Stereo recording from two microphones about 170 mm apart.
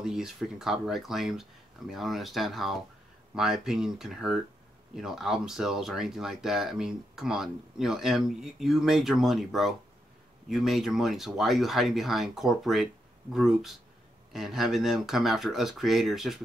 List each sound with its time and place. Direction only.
0.0 s speech: 5° right (ahead or behind)